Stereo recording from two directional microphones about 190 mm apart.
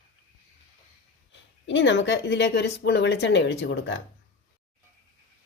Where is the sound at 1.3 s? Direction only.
70° left (ahead or behind).